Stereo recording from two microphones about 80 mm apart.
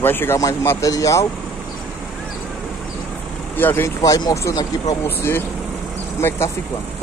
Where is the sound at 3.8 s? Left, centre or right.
Left.